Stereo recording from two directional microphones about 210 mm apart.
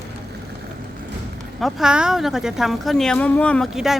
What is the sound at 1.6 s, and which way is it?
A woman's voice, 5° right (ahead or behind).